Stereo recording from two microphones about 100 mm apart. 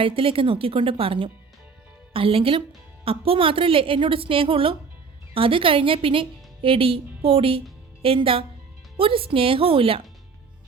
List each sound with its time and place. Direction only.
0.0 s a woman's voice: 65° right (ahead or behind)